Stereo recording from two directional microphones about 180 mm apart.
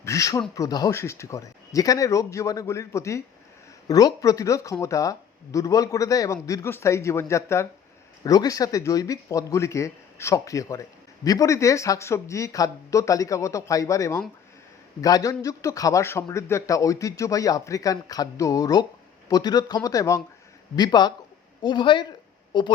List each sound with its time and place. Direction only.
0.0 s a man's voice: 15° left (ahead or behind)